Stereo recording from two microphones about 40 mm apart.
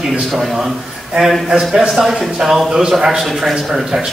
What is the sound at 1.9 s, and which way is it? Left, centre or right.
Speech, centre.